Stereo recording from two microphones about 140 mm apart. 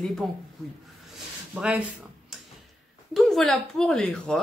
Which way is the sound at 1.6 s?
10° right (ahead or behind).